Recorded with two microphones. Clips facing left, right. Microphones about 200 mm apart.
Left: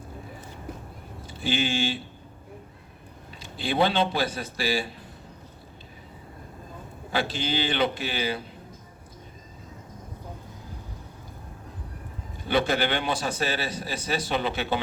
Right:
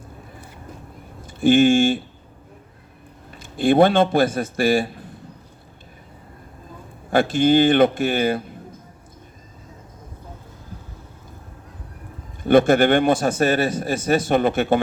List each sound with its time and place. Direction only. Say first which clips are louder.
1.3 s a man's voice: right 13 dB; 50° right (ahead or behind)
3.4 s a man's voice: right 10 dB; 50° right (ahead or behind)
7.1 s a man's voice: right 12 dB; 50° right (ahead or behind)
12.4 s a man's voice: right 10 dB; 50° right (ahead or behind)